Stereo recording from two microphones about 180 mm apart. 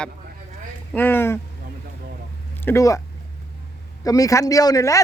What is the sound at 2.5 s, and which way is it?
Speech, 15° left (ahead or behind).